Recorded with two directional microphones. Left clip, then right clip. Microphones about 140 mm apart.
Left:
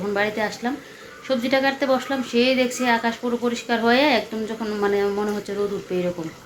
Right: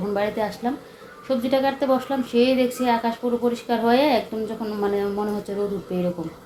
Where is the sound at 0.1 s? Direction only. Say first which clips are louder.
Left 1 dB; centre (ahead or behind).